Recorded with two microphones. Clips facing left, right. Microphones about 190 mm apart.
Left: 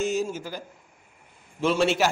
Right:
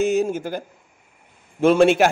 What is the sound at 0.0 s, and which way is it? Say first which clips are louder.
A man's voice: right 7 dB; 60° right (ahead or behind).